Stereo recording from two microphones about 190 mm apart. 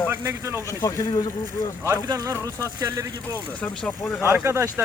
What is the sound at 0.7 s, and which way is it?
Speech, 15° left (ahead or behind).